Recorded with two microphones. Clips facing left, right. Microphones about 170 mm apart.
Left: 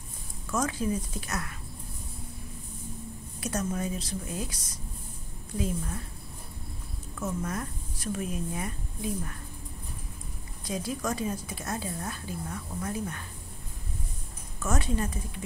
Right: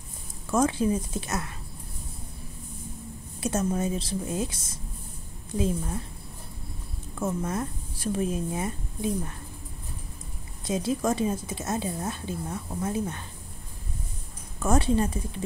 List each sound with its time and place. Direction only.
0.5 s a woman's voice: 30° right (ahead or behind)
3.3 s a woman's voice: 25° right (ahead or behind)
7.2 s a woman's voice: 25° right (ahead or behind)
10.6 s a woman's voice: 25° right (ahead or behind)
14.6 s a woman's voice: 30° right (ahead or behind)